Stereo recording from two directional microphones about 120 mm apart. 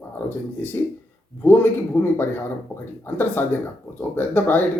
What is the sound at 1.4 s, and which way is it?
Speech, 20° left (ahead or behind).